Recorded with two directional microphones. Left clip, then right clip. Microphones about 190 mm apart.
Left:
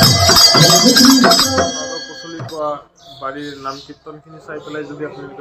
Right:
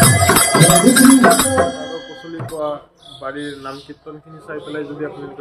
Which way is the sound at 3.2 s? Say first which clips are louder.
Left 2 dB; 5° right (ahead or behind).